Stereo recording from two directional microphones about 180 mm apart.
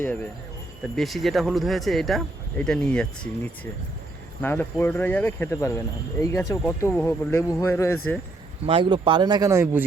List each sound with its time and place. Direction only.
0.0 s speech: 10° left (ahead or behind)
8.6 s speech: 30° right (ahead or behind)